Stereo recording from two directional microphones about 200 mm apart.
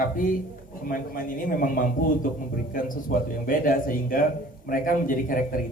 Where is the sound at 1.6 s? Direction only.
45° left (ahead or behind).